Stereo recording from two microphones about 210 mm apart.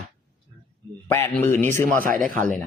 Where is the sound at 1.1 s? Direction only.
10° left (ahead or behind).